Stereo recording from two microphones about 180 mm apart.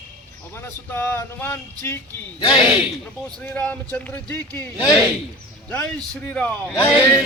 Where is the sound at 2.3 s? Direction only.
25° left (ahead or behind).